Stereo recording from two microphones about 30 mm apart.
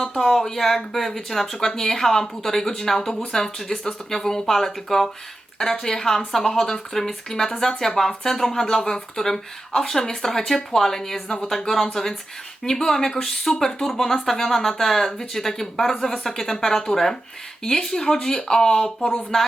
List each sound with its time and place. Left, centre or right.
0.0 s speech: centre
0.3 s speech: centre